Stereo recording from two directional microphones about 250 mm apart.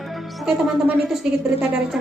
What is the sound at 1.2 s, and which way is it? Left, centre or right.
Speech, centre.